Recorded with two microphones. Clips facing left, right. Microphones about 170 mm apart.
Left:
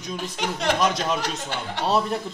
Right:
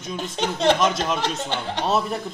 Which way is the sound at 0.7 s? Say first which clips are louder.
Right 1 dB; centre (ahead or behind).